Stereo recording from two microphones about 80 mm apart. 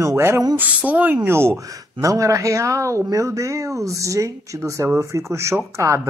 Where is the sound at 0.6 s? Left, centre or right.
Centre.